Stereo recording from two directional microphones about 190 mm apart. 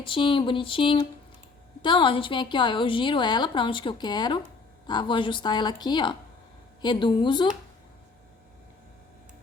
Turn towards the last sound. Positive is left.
turn(degrees=25)  # may be behind; listen again after turning